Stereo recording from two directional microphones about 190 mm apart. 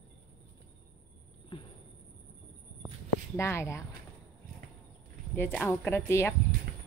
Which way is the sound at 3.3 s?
15° left (ahead or behind).